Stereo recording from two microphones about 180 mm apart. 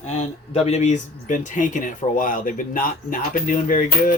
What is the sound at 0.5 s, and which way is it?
Speech, 35° left (ahead or behind).